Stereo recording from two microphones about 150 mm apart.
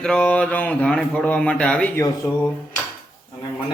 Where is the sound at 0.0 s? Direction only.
5° left (ahead or behind).